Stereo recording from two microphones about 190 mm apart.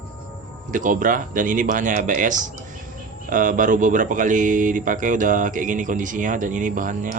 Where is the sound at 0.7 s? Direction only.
45° right (ahead or behind).